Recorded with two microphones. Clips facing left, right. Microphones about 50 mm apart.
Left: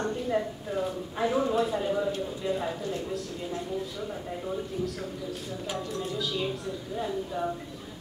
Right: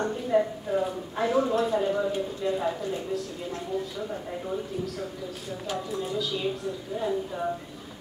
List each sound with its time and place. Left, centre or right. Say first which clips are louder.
0.0 s a sound: right 3 dB; centre
0.4 s speech: right 5 dB; centre
5.9 s speech: right 2 dB; centre